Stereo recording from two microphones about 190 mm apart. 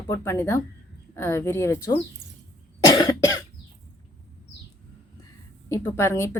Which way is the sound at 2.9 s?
20° left (ahead or behind).